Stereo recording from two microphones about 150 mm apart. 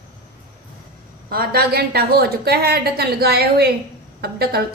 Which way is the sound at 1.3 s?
90° right.